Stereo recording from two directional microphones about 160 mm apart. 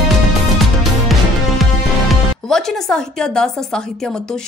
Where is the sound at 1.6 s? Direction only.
Centre (ahead or behind).